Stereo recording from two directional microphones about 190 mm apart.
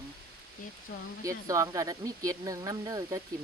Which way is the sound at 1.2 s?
15° right (ahead or behind).